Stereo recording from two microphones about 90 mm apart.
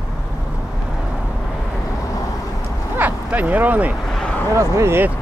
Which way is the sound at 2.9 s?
20° right (ahead or behind).